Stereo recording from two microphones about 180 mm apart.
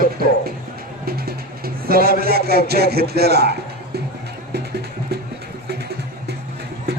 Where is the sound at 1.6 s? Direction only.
55° right (ahead or behind).